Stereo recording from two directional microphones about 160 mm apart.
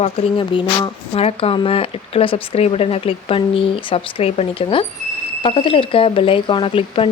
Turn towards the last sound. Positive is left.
turn(degrees=35)  # may be behind; listen again after turning